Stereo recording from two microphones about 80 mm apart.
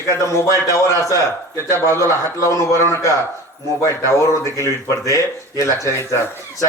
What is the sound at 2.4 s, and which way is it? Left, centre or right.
Speech, left.